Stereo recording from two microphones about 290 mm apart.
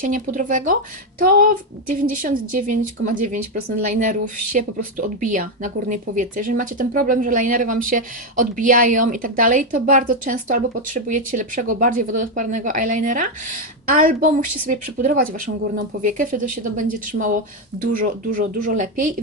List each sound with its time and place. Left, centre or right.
0.0 s speech: right